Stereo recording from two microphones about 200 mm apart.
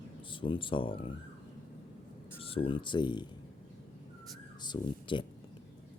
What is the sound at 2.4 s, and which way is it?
Speech, 30° left (ahead or behind).